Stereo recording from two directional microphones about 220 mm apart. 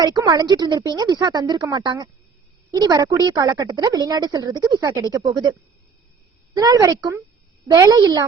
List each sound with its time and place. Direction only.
0.0 s a woman's voice: 15° right (ahead or behind)
6.6 s a woman's voice: 15° right (ahead or behind)